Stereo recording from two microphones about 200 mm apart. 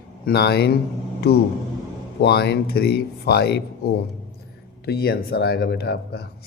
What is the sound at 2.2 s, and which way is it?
Speech, 55° left (ahead or behind).